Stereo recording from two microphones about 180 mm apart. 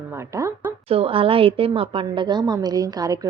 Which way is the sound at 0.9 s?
30° right (ahead or behind).